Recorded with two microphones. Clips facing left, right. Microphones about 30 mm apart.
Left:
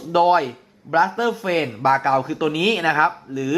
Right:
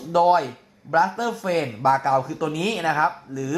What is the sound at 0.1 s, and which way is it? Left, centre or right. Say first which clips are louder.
Speech: left 1 dB; left.